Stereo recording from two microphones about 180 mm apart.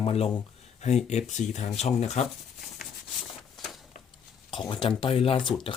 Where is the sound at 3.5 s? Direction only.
Centre (ahead or behind).